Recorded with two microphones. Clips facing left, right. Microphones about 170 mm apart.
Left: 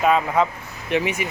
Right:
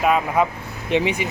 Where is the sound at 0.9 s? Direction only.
20° right (ahead or behind).